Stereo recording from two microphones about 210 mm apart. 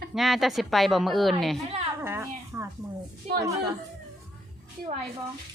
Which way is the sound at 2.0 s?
10° right (ahead or behind).